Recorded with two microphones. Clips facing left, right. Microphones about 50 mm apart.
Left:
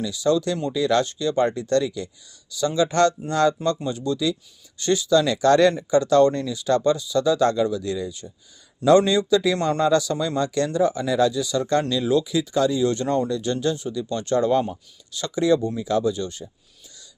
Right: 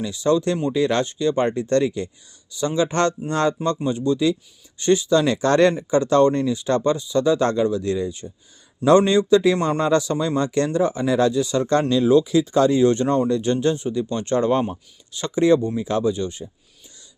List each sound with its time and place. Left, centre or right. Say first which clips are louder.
0.0 s a man's voice: right 2 dB; right